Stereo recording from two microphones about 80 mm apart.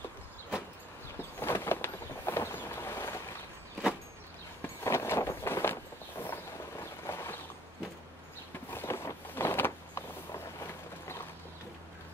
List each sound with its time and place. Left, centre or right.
1.4 s vehicle: left
4.8 s a sound: left
8.6 s vehicle: left